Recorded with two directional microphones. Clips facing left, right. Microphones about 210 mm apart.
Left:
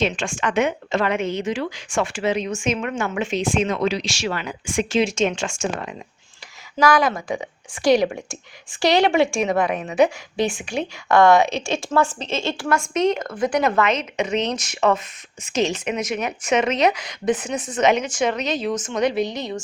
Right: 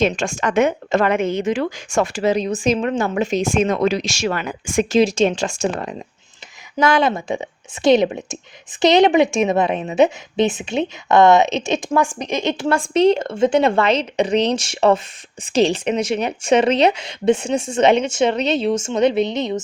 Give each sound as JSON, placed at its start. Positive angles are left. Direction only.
{"t": 0.0, "sound": "speech", "side_deg": -40}
{"t": 6.7, "sound": "a woman's voice", "side_deg": -25}